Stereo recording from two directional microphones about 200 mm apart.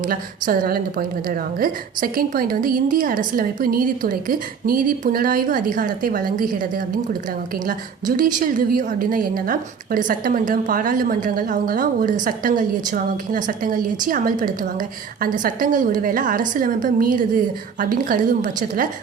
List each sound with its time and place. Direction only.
0.0 s a woman's voice: 45° right (ahead or behind)